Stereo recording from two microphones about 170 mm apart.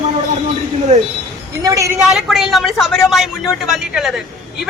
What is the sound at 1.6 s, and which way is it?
Speech, 20° right (ahead or behind).